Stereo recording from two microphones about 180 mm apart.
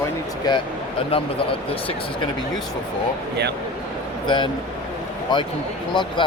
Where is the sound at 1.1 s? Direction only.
30° left (ahead or behind).